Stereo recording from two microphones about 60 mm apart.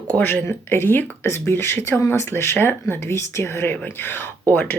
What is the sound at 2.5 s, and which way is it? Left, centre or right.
Speech, left.